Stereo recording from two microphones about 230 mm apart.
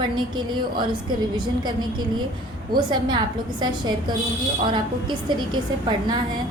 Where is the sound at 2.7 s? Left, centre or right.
Centre.